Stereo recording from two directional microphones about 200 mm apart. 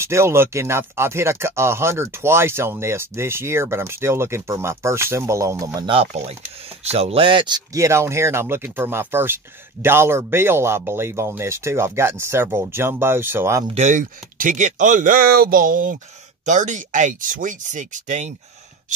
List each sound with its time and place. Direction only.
0.0 s speech: 15° right (ahead or behind)
13.7 s speech: 35° right (ahead or behind)